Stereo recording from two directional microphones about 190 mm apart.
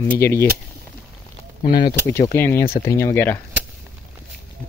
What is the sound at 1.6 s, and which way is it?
Speech, 55° left (ahead or behind).